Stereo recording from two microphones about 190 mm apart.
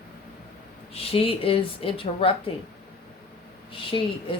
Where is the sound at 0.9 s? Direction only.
30° left (ahead or behind).